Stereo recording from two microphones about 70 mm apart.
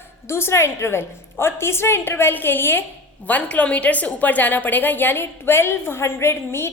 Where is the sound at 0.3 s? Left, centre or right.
Left.